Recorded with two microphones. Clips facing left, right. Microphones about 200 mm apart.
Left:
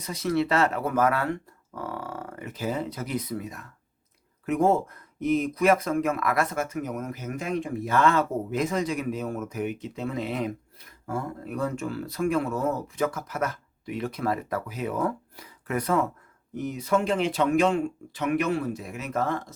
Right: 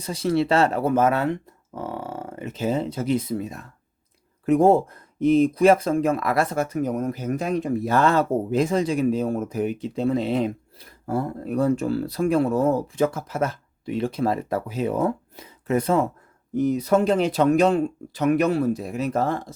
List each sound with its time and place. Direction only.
0.0 s speech: 30° right (ahead or behind)
16.6 s speech: 35° right (ahead or behind)